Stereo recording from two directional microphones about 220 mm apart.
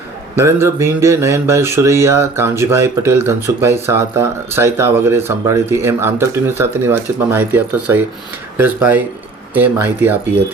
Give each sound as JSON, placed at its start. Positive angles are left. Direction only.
{"t": 0.3, "sound": "speech", "side_deg": -10}